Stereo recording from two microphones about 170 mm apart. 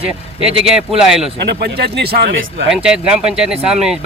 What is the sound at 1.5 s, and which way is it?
Speech, 75° right (ahead or behind).